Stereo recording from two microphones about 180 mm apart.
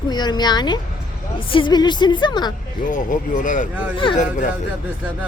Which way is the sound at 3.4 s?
45° left (ahead or behind).